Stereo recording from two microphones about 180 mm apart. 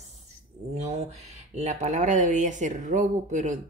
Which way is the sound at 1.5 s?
40° right (ahead or behind).